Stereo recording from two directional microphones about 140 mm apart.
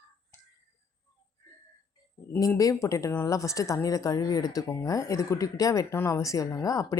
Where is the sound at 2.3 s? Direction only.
25° left (ahead or behind).